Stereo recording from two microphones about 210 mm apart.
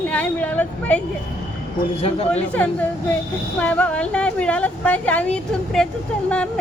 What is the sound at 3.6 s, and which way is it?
Speech, 5° left (ahead or behind).